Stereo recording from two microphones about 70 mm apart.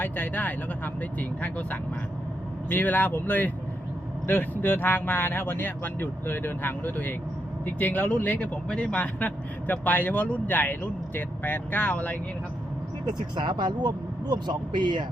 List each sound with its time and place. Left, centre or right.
0.0 s speech: left
13.1 s speech: right